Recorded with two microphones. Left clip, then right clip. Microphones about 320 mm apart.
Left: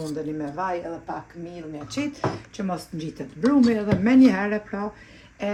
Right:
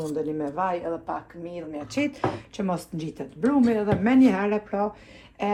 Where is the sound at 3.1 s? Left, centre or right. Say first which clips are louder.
Left 2 dB; centre.